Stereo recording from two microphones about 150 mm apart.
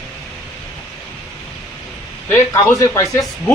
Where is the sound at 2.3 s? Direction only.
15° left (ahead or behind).